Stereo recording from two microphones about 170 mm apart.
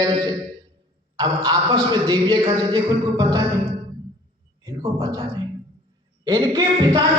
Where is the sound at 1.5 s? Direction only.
20° right (ahead or behind).